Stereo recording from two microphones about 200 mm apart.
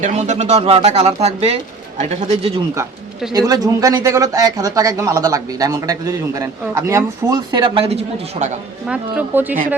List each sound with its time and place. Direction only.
0.0 s speech: 35° right (ahead or behind)
3.3 s speech: 20° right (ahead or behind); by 8.5 s 35° right (ahead or behind)
8.9 s speech: 10° right (ahead or behind)